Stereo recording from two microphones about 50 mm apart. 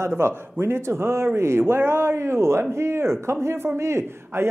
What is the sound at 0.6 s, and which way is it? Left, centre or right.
Speech, right.